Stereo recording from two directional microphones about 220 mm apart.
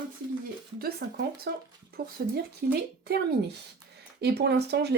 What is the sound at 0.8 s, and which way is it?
Speech, 45° right (ahead or behind).